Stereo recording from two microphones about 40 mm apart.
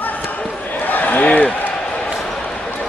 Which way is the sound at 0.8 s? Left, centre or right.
Left.